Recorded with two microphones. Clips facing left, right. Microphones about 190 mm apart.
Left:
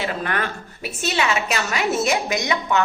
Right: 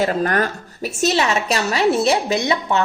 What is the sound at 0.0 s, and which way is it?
A woman's voice, 40° right (ahead or behind).